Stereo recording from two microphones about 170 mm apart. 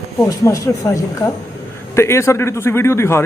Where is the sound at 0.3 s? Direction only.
20° left (ahead or behind).